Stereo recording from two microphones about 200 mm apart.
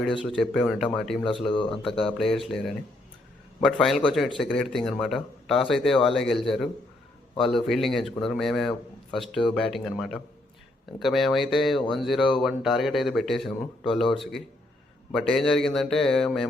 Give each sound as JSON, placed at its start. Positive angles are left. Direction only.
{"t": 0.3, "sound": "speech", "side_deg": 0}
{"t": 1.5, "sound": "speech", "side_deg": 25}
{"t": 2.1, "sound": "speech", "side_deg": 0}